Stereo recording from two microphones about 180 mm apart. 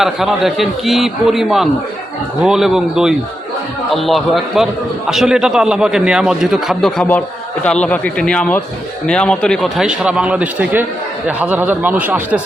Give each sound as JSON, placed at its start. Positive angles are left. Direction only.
{"t": 0.0, "sound": "a man's voice", "side_deg": 0}